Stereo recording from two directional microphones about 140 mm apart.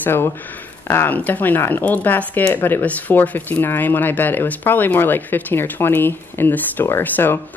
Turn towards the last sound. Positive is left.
turn(degrees=15)  # may be behind; listen again after turning